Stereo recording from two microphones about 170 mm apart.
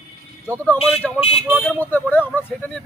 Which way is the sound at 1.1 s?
35° left (ahead or behind).